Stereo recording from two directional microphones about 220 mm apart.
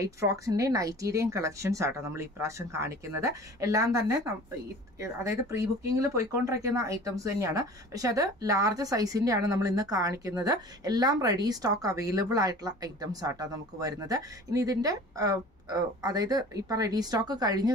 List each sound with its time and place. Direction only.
0.0 s speech: 15° right (ahead or behind)